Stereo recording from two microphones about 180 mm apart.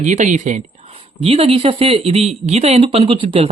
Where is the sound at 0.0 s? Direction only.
45° right (ahead or behind).